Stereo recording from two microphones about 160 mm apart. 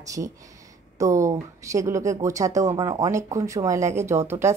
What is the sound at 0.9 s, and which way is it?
Speech, 20° right (ahead or behind).